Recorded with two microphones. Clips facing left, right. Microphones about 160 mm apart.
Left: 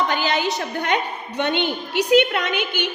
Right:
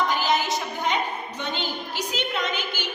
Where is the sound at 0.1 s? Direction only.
65° left (ahead or behind).